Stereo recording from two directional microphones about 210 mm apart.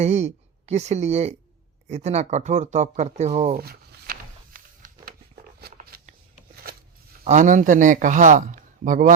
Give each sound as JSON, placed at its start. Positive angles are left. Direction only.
{"t": 0.0, "sound": "a man's voice", "side_deg": -30}
{"t": 3.6, "sound": "a sound", "side_deg": -45}
{"t": 7.3, "sound": "a man's voice", "side_deg": -35}